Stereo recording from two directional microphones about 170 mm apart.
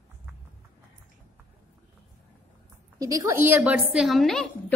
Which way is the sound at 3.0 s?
20° right (ahead or behind).